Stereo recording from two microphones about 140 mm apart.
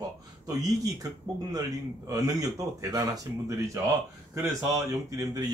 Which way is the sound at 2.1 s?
25° right (ahead or behind).